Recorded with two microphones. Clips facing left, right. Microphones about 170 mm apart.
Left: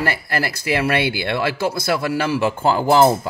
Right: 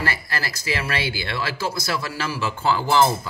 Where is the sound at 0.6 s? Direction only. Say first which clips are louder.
Left 7 dB; 60° left (ahead or behind).